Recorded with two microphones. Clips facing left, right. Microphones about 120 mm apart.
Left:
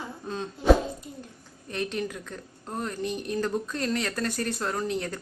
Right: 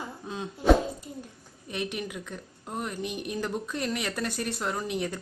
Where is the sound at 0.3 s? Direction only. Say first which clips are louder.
Left 3 dB; 10° right (ahead or behind).